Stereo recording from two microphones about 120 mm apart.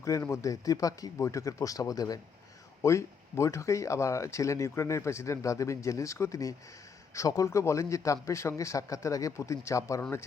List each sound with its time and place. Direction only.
0.0 s speech: 25° left (ahead or behind)